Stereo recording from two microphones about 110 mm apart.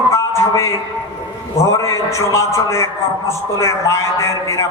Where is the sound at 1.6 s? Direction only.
30° left (ahead or behind).